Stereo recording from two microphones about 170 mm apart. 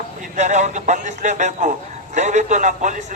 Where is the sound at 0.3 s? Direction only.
45° right (ahead or behind).